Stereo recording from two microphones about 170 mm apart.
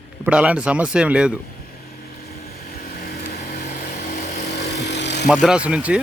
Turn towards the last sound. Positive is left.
turn(degrees=-5)  # may be behind; listen again after turning